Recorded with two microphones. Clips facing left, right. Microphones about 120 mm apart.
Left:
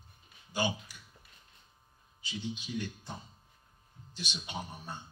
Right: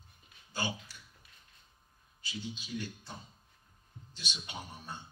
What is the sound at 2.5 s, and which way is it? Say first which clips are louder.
Speech: left 4 dB; 15° left (ahead or behind).